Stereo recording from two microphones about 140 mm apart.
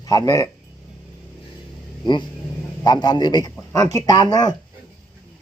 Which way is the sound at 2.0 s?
35° left (ahead or behind).